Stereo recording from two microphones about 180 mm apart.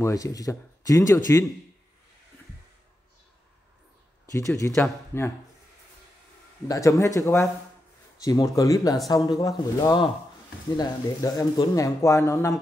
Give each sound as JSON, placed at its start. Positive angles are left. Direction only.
{"t": 0.0, "sound": "speech", "side_deg": 20}
{"t": 4.3, "sound": "speech", "side_deg": 15}
{"t": 6.7, "sound": "speech", "side_deg": 15}